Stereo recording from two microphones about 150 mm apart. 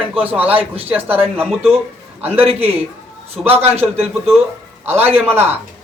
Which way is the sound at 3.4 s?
Centre (ahead or behind).